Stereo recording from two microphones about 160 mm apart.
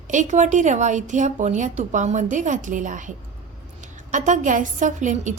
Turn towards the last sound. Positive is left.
turn(degrees=-50)  # may be behind; listen again after turning